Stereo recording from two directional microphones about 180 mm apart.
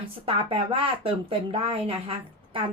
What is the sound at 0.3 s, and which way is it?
Speech, 30° right (ahead or behind).